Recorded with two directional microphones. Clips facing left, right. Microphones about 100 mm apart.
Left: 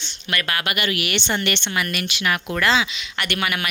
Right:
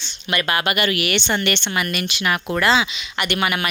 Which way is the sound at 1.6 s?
30° right (ahead or behind).